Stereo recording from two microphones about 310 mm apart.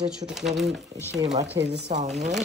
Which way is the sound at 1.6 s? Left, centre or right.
Right.